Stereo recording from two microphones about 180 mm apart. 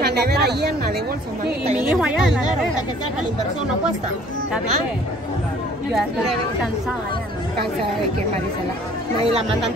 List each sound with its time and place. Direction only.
0.0 s a woman's voice: 65° right (ahead or behind)
1.9 s speech: 5° right (ahead or behind)
5.9 s speech: centre (ahead or behind)